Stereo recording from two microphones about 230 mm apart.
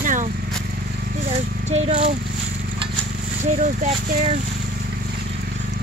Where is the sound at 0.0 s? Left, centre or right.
Right.